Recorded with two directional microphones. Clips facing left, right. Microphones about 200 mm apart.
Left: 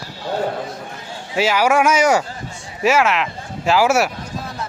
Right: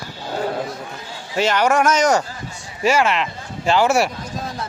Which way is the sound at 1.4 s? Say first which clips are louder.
Left 1 dB; 5° left (ahead or behind).